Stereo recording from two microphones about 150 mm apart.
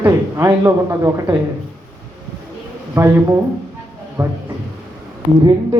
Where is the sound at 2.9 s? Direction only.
15° right (ahead or behind).